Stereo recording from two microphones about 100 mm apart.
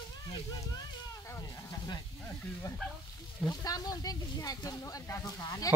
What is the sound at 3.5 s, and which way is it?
Speech, 40° left (ahead or behind).